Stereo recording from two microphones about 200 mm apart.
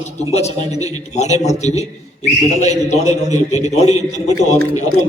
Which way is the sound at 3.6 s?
35° left (ahead or behind).